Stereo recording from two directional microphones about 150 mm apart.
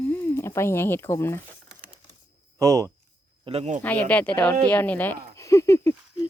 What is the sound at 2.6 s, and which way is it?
Speech, 20° right (ahead or behind).